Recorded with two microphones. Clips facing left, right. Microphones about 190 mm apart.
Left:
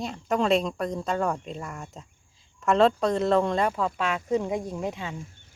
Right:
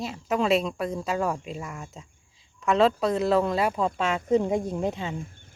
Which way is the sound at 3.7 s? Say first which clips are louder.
Right 2 dB; 25° right (ahead or behind).